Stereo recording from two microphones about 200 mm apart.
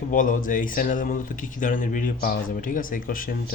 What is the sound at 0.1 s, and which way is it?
Speech, 40° left (ahead or behind).